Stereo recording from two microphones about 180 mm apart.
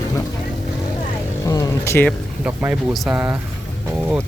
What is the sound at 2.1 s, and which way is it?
Speech, 10° right (ahead or behind).